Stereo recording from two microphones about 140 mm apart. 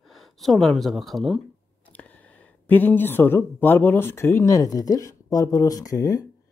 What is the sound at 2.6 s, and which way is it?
Speech, 15° left (ahead or behind).